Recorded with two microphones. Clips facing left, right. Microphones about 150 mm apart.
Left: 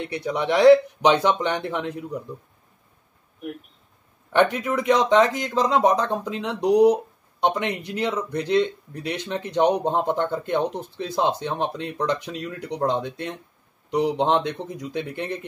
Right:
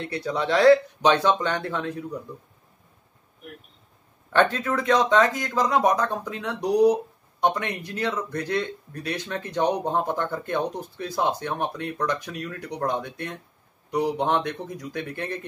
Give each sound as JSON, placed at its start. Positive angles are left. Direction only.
{"t": 0.0, "sound": "speech", "side_deg": 15}
{"t": 4.3, "sound": "speech", "side_deg": 15}